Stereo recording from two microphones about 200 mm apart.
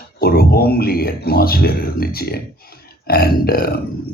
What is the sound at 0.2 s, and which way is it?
Speech, 50° left (ahead or behind).